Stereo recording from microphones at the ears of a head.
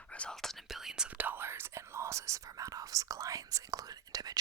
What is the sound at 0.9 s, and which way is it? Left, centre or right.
Speech, right.